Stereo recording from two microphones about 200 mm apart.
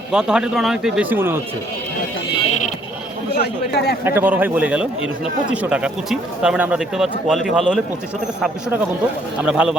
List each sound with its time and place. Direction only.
0.1 s speech: 5° right (ahead or behind)
3.3 s speech: 55° left (ahead or behind)
4.0 s a man's voice: 10° right (ahead or behind)
9.4 s speech: 5° right (ahead or behind)